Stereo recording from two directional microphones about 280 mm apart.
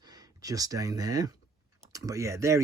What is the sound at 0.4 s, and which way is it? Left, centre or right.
Speech, centre.